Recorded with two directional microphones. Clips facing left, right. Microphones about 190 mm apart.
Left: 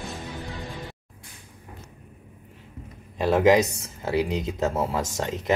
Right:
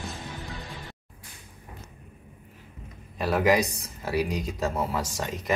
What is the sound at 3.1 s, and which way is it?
Speech, 25° left (ahead or behind).